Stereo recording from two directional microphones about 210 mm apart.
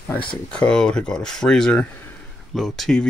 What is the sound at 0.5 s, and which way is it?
Speech, 5° left (ahead or behind).